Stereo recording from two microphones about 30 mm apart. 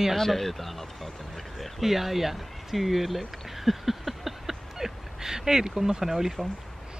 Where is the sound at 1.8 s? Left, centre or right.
Centre.